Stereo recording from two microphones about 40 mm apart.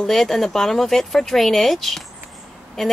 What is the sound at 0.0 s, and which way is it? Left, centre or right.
A woman's voice, centre.